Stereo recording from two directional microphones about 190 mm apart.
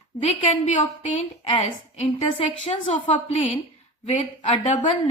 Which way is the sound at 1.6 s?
35° left (ahead or behind).